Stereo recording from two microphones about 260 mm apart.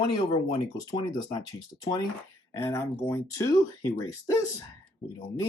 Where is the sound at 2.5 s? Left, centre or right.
Centre.